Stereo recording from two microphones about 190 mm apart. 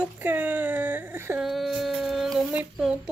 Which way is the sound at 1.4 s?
Centre (ahead or behind).